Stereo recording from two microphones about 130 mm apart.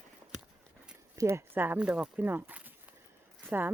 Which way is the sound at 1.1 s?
25° right (ahead or behind).